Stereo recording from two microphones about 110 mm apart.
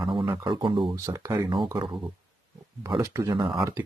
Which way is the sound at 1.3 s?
45° right (ahead or behind).